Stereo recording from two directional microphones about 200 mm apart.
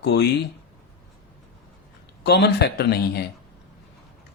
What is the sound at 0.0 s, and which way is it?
Speech, 55° left (ahead or behind).